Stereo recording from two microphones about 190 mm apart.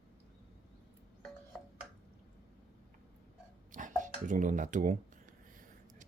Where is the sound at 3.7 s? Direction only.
40° right (ahead or behind).